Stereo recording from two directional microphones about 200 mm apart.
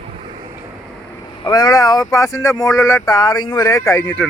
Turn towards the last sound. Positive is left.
turn(degrees=10)  # may be behind; listen again after turning